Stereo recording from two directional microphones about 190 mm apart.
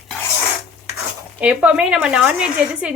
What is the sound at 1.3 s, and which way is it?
Speech, 10° right (ahead or behind).